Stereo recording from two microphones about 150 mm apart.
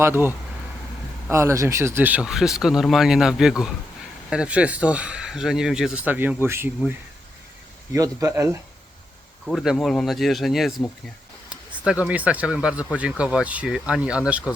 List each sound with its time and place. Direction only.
0.0 s speech: 15° right (ahead or behind)
7.9 s speech: 20° right (ahead or behind)
9.5 s speech: centre (ahead or behind)
11.9 s speech: 10° right (ahead or behind)